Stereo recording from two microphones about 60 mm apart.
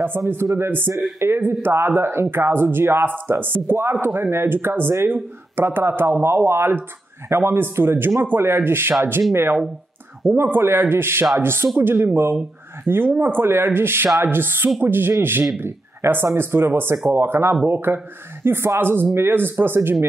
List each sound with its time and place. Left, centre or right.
0.2 s speech: right
0.6 s speech: right